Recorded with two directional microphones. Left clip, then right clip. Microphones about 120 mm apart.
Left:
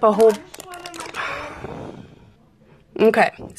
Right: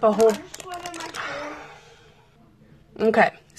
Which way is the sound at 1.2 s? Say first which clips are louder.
Left 4 dB; 60° left (ahead or behind).